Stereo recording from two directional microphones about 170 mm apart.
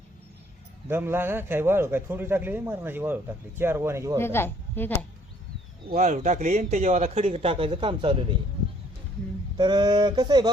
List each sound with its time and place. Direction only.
0.9 s speech: 15° right (ahead or behind)
4.2 s a woman's voice: 15° left (ahead or behind)
5.9 s a man's voice: 45° right (ahead or behind); by 8.4 s 30° right (ahead or behind)
9.6 s a sound: 25° right (ahead or behind)